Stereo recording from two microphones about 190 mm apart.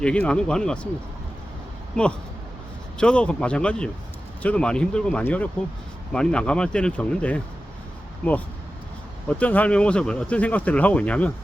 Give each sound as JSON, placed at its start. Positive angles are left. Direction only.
{"t": 0.0, "sound": "speech", "side_deg": 5}
{"t": 3.0, "sound": "speech", "side_deg": 5}
{"t": 9.4, "sound": "speech", "side_deg": 10}